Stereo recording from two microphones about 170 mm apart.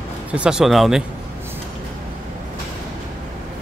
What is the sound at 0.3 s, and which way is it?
Speech, 5° right (ahead or behind).